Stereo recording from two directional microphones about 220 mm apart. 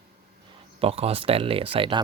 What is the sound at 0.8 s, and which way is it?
Speech, 25° right (ahead or behind).